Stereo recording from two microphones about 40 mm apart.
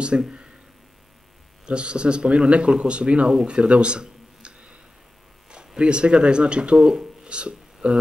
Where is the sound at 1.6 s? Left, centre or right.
Right.